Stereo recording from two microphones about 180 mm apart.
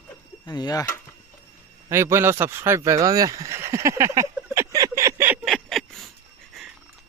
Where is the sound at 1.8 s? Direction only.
15° right (ahead or behind).